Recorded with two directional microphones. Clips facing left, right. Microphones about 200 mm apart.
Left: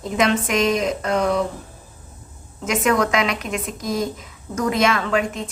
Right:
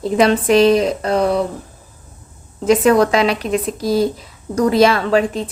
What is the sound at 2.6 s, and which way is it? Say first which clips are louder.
Speech: right 7 dB; 35° right (ahead or behind).